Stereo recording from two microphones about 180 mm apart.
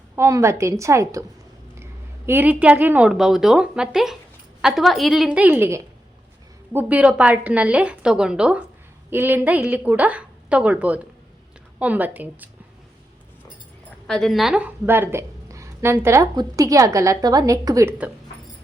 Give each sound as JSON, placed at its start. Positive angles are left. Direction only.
{"t": 0.2, "sound": "a woman's voice", "side_deg": -15}
{"t": 14.1, "sound": "a woman's voice", "side_deg": 0}